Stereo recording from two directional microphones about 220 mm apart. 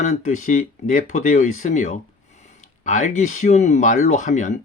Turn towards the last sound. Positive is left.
turn(degrees=35)  # may be behind; listen again after turning